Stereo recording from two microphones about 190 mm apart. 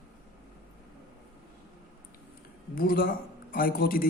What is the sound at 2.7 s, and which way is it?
A man's voice, 50° left (ahead or behind).